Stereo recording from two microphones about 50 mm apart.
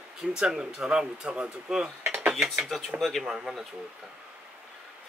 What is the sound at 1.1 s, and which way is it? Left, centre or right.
Speech, right.